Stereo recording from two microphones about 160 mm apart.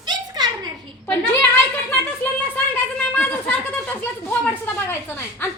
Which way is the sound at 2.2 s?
10° left (ahead or behind).